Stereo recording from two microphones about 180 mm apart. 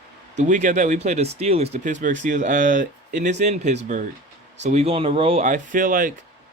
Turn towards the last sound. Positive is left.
turn(degrees=-50)  # may be behind; listen again after turning